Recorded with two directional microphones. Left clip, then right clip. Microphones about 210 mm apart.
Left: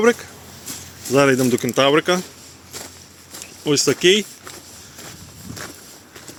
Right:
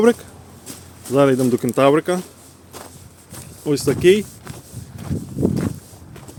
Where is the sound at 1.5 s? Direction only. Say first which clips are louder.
Right 1 dB; 25° right (ahead or behind).